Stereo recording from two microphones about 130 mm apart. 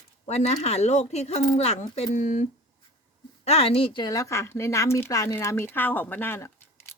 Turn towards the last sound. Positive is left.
turn(degrees=15)  # may be behind; listen again after turning